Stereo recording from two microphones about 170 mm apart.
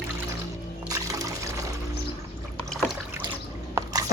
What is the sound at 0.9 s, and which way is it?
Pour, 20° right (ahead or behind).